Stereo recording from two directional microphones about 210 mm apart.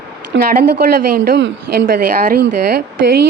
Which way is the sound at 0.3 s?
50° right (ahead or behind).